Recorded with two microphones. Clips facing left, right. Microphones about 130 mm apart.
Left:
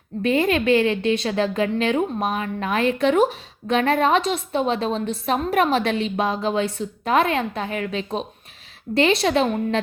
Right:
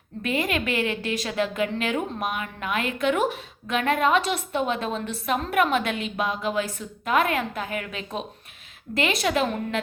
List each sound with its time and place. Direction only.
0.2 s a woman's voice: 30° left (ahead or behind)